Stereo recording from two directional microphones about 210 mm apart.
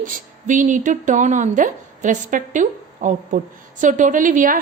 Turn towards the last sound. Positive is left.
turn(degrees=-40)  # may be behind; listen again after turning